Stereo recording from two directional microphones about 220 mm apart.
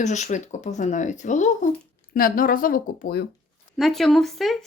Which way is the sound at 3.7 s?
Centre (ahead or behind).